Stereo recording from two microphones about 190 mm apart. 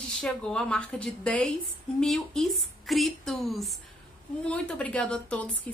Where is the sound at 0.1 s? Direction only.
5° left (ahead or behind).